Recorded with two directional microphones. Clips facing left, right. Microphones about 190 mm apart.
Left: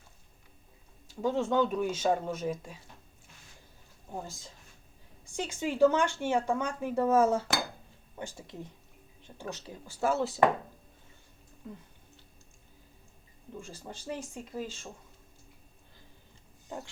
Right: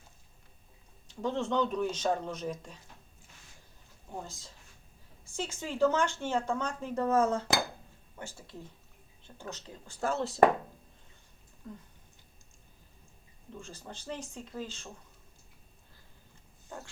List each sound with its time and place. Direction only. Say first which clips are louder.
1.0 s speech: left 3 dB; 5° left (ahead or behind)
4.1 s speech: left 2 dB; 10° left (ahead or behind)
13.5 s speech: left 2 dB; 10° left (ahead or behind)
16.6 s dog: left 4 dB; 15° left (ahead or behind)